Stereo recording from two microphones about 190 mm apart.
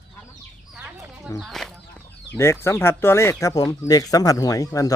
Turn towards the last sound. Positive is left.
turn(degrees=20)  # may be behind; listen again after turning